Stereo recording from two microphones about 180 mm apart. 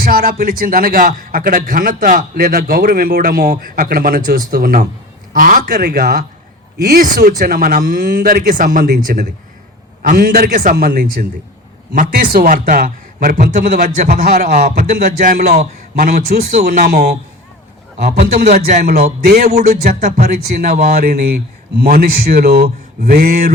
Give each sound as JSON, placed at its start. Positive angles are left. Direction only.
{"t": 0.0, "sound": "a man's voice", "side_deg": -55}
{"t": 18.4, "sound": "a man's voice", "side_deg": -45}
{"t": 19.2, "sound": "speech", "side_deg": -55}